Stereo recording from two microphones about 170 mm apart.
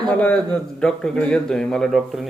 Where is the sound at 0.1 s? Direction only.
5° left (ahead or behind).